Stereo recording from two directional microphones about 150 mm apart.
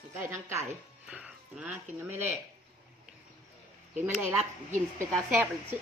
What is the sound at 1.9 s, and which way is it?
Speech, 15° right (ahead or behind).